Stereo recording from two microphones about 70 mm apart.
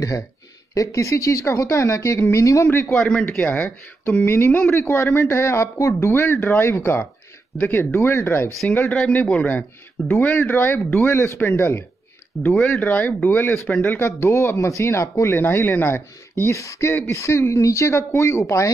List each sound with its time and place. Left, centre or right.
0.7 s speech: left
6.2 s speech: left
8.9 s a man's voice: left
12.4 s a man's voice: left
13.9 s speech: left